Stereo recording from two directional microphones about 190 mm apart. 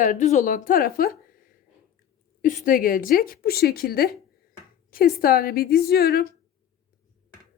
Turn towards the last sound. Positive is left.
turn(degrees=50)  # may be behind; listen again after turning